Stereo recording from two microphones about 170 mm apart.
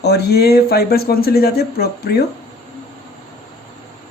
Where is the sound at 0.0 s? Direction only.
70° left (ahead or behind).